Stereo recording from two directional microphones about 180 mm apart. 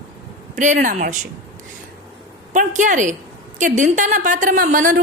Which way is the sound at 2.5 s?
45° right (ahead or behind).